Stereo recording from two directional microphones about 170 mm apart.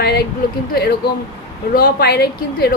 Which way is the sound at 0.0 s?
75° left (ahead or behind).